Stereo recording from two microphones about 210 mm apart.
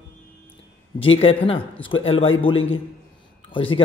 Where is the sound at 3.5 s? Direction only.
25° left (ahead or behind).